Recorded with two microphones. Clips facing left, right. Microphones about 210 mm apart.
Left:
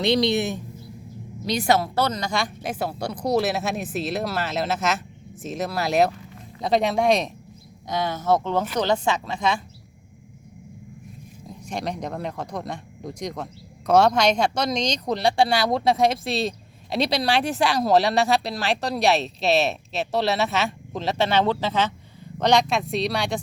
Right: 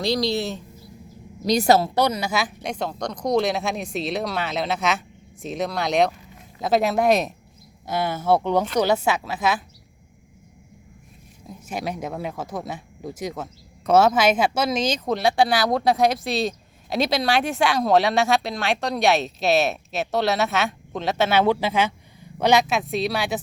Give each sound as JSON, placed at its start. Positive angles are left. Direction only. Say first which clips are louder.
{"t": 0.0, "sound": "speech", "louder": "left 2 dB", "side_deg": 20}
{"t": 1.5, "sound": "a woman's voice", "louder": "right 4 dB", "side_deg": -40}
{"t": 2.0, "sound": "speech", "louder": "right 2 dB", "side_deg": -10}
{"t": 11.6, "sound": "speech", "louder": "even", "side_deg": -5}